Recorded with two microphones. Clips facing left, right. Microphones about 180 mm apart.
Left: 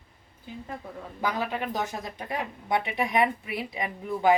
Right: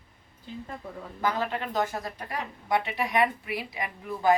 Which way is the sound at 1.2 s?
15° left (ahead or behind).